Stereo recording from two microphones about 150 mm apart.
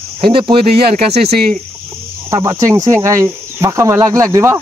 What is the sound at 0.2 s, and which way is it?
Speech, 35° right (ahead or behind).